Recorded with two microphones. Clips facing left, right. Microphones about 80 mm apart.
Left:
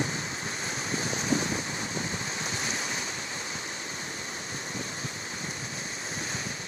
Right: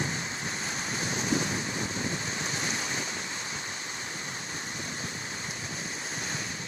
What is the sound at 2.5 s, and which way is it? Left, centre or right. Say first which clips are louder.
Waves: even; right.